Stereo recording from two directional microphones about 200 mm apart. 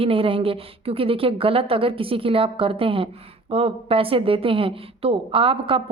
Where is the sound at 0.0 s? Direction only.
25° right (ahead or behind).